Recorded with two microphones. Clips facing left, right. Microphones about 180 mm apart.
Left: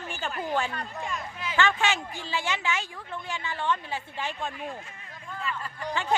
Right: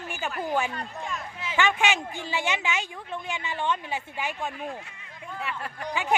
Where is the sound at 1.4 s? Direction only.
20° right (ahead or behind).